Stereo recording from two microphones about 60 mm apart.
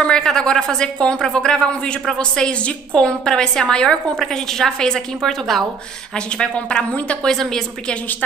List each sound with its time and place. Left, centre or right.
0.0 s a woman's voice: centre
6.1 s a woman's voice: centre
7.2 s a woman's voice: centre